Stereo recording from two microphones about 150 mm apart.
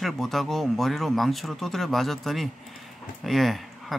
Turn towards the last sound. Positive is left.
turn(degrees=0)  # may be behind; listen again after turning